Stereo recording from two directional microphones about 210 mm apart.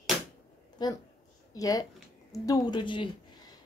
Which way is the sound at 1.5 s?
15° left (ahead or behind).